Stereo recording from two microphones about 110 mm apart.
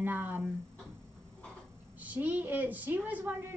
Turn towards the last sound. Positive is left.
turn(degrees=-15)  # may be behind; listen again after turning